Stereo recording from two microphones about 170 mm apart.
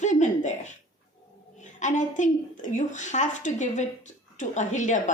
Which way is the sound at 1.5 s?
45° left (ahead or behind).